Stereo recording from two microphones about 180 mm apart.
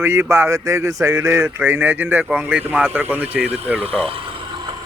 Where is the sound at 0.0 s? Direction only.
15° right (ahead or behind).